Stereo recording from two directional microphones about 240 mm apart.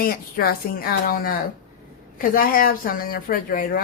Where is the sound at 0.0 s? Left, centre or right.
Left.